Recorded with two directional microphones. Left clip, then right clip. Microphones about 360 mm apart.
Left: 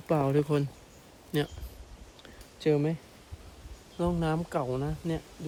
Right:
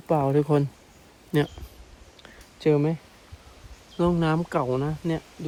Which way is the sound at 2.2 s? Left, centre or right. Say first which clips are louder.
Right 5 dB; centre.